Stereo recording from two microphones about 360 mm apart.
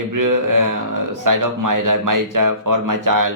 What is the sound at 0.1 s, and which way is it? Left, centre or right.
Speech, right.